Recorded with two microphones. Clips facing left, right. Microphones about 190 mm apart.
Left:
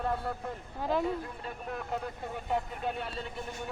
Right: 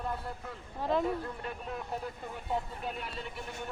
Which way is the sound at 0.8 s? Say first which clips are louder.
Even; centre (ahead or behind).